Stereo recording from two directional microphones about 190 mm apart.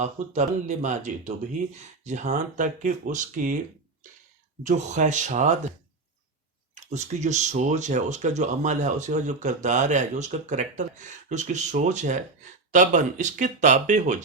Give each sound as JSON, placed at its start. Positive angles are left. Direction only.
{"t": 0.0, "sound": "speech", "side_deg": -40}
{"t": 4.6, "sound": "speech", "side_deg": -40}
{"t": 6.7, "sound": "speech", "side_deg": -40}